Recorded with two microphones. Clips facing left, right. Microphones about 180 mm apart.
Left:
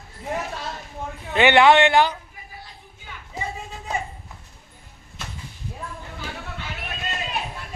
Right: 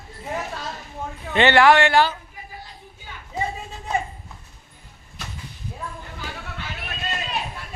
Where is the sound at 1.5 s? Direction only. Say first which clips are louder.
Left 1 dB; 20° left (ahead or behind).